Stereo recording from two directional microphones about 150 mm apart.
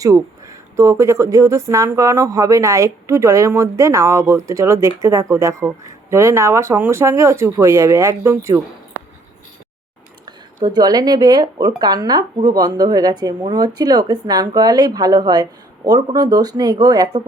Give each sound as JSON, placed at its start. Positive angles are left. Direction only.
{"t": 0.0, "sound": "speech", "side_deg": -20}
{"t": 10.2, "sound": "speech", "side_deg": -30}